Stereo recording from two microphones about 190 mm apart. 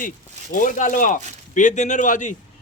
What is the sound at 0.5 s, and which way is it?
Speech, 45° left (ahead or behind).